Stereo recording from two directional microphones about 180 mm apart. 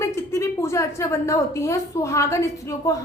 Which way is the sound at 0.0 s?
15° left (ahead or behind).